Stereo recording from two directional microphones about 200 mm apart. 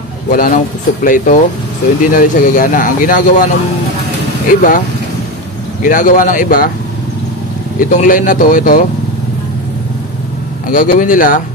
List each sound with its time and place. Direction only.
0.3 s speech: 45° left (ahead or behind)
4.5 s speech: 40° left (ahead or behind)
7.8 s speech: 40° left (ahead or behind)
10.7 s speech: 45° left (ahead or behind)